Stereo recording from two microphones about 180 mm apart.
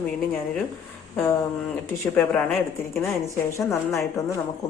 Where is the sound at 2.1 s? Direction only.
5° left (ahead or behind).